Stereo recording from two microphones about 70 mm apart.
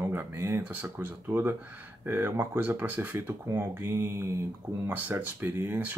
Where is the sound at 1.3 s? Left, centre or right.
Right.